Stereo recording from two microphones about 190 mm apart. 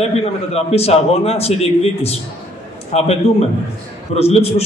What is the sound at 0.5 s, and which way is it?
A man's voice, 35° left (ahead or behind).